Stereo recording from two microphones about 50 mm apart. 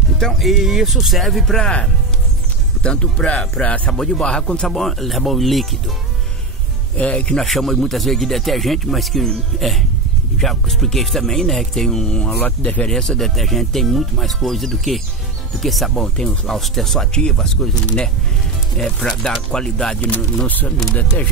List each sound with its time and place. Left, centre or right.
0.3 s speech: centre
1.6 s speech: left
3.9 s speech: centre
4.6 s speech: centre
7.0 s speech: left
7.3 s speech: centre
12.4 s speech: left
13.2 s speech: centre
17.1 s speech: centre
18.8 s speech: centre
20.4 s speech: left